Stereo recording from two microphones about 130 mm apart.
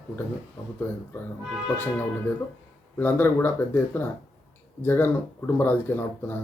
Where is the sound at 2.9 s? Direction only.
15° left (ahead or behind).